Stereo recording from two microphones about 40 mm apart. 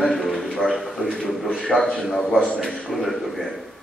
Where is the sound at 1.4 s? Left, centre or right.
Left.